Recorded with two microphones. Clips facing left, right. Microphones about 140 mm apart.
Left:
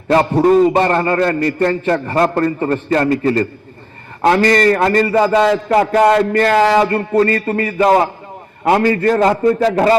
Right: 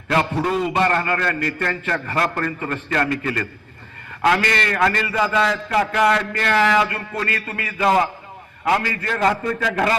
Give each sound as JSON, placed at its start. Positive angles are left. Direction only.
{"t": 0.1, "sound": "a man's voice", "side_deg": 40}